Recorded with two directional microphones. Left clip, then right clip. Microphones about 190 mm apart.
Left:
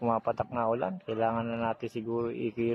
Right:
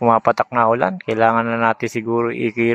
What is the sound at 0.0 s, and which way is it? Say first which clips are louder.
A man's voice: right 15 dB; 20° right (ahead or behind).